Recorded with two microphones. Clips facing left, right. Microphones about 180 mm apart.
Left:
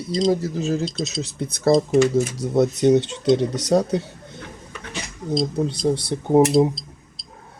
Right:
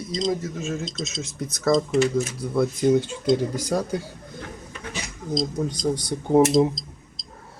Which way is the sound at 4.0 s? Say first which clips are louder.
Left 4 dB; 25° left (ahead or behind).